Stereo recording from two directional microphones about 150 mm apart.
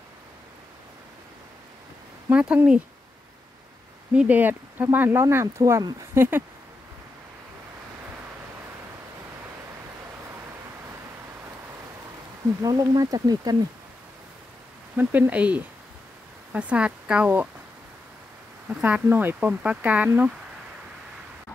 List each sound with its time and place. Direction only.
2.2 s speech: 10° right (ahead or behind)
4.1 s speech: 10° right (ahead or behind)
12.6 s speech: 25° right (ahead or behind)
15.0 s speech: 10° right (ahead or behind)
18.7 s speech: 10° right (ahead or behind)